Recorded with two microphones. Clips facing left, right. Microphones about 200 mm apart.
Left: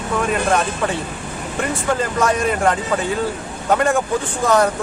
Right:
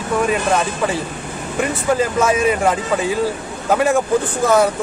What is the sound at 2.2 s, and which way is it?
Speech, 5° right (ahead or behind).